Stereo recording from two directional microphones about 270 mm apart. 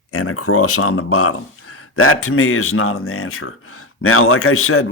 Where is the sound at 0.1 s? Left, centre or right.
Left.